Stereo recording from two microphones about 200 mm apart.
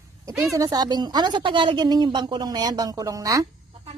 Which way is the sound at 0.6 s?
20° right (ahead or behind).